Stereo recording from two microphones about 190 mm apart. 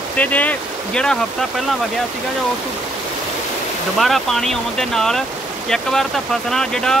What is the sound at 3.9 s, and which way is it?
Speech, centre (ahead or behind).